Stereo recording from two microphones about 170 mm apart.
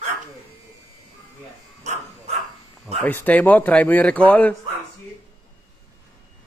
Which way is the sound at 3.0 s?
10° left (ahead or behind).